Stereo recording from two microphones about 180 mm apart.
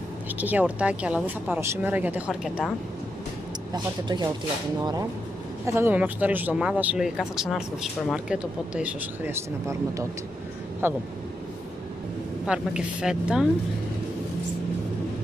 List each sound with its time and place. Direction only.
0.4 s a woman's voice: 10° right (ahead or behind)
3.7 s speech: 25° right (ahead or behind)
5.7 s a woman's voice: 10° right (ahead or behind)
12.4 s a woman's voice: 5° right (ahead or behind)